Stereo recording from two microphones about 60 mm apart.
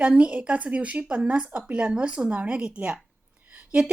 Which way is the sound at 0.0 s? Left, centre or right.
Right.